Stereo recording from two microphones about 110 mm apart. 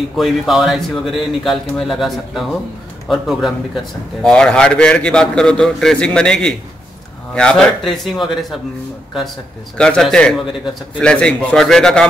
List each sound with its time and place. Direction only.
0.2 s a man's voice: centre (ahead or behind)
9.8 s a man's voice: 5° left (ahead or behind)